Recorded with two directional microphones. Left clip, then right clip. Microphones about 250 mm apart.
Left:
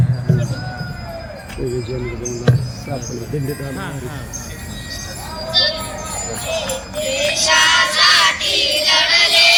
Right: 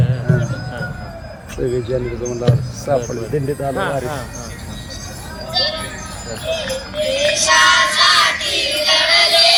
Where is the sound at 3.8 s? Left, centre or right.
Right.